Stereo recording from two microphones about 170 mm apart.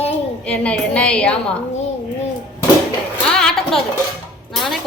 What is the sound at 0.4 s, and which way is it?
Speech, 5° left (ahead or behind).